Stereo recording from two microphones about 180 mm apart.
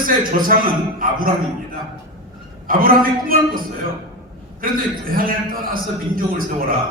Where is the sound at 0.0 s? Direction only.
50° right (ahead or behind).